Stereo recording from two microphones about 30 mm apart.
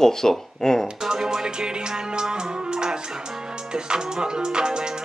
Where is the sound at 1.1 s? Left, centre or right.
Right.